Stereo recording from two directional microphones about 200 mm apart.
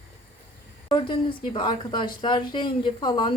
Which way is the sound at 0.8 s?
25° left (ahead or behind).